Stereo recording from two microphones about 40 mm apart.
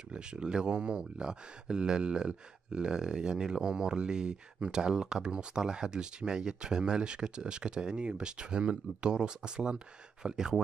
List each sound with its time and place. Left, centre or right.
0.1 s speech: right